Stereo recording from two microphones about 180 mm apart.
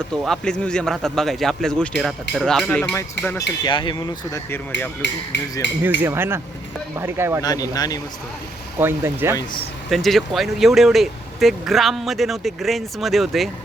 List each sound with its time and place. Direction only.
0.1 s speech: 5° left (ahead or behind)
2.9 s speech: 15° left (ahead or behind)
5.0 s speech: 85° left
6.0 s speech: 15° right (ahead or behind)
7.4 s speech: 20° left (ahead or behind)
8.8 s speech: 15° right (ahead or behind)
9.9 s speech: centre (ahead or behind)